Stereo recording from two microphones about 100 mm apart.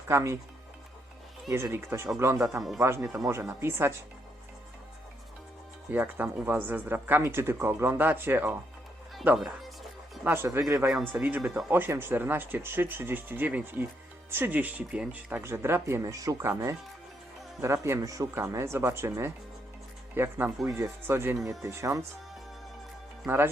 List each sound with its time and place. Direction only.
0.1 s speech: 30° right (ahead or behind)
1.5 s speech: 25° right (ahead or behind)
5.9 s speech: 20° right (ahead or behind)
11.1 s speech: 15° right (ahead or behind)
16.0 s speech: 35° right (ahead or behind)
17.6 s speech: 30° right (ahead or behind)